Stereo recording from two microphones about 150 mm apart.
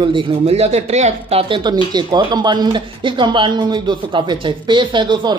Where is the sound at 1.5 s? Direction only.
30° right (ahead or behind).